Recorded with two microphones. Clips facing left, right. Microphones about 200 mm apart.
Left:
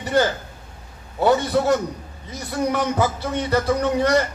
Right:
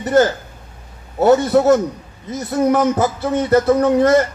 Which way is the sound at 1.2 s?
45° right (ahead or behind).